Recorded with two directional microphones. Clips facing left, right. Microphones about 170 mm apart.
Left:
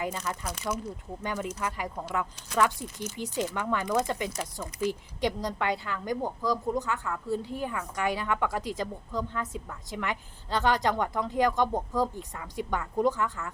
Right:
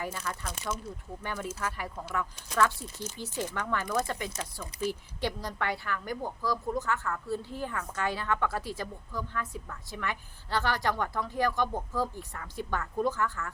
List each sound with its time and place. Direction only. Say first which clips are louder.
0.0 s speech: left 3 dB; 15° left (ahead or behind)